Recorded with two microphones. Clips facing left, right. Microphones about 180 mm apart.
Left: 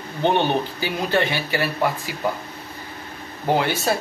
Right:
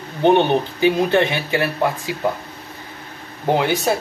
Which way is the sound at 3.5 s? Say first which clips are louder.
Right 3 dB; 20° right (ahead or behind).